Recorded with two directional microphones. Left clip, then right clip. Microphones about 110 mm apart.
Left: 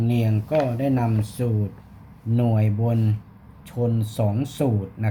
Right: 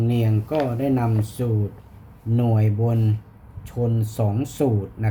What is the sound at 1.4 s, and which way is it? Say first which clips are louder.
Speech: even; 15° left (ahead or behind).